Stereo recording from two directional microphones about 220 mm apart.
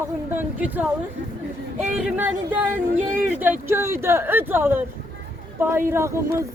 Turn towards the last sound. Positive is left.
turn(degrees=-10)  # may be behind; listen again after turning